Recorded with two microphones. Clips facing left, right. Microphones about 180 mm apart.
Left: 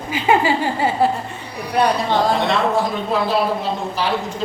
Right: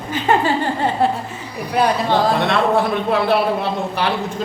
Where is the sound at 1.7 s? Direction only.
Centre (ahead or behind).